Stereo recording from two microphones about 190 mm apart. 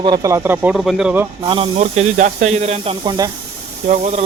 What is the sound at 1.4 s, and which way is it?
Speech, 30° right (ahead or behind).